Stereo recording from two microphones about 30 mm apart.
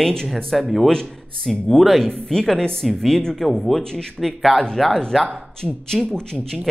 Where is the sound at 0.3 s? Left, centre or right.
Centre.